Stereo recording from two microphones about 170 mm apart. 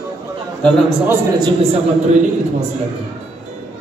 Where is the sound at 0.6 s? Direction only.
5° left (ahead or behind).